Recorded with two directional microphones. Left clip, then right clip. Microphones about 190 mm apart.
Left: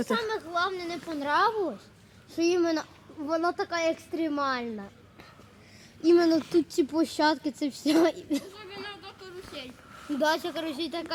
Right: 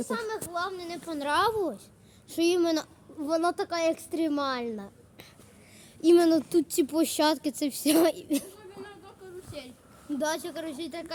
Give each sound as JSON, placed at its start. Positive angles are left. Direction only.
{"t": 0.1, "sound": "speech", "side_deg": 35}
{"t": 1.2, "sound": "a child's voice", "side_deg": -30}
{"t": 6.1, "sound": "a child's voice", "side_deg": -40}
{"t": 6.5, "sound": "speech", "side_deg": -25}
{"t": 9.6, "sound": "a sound", "side_deg": -75}
{"t": 10.2, "sound": "speech", "side_deg": 35}